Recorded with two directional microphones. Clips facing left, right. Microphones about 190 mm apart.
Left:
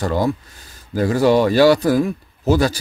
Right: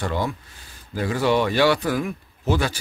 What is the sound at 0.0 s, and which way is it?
Speech, 40° left (ahead or behind).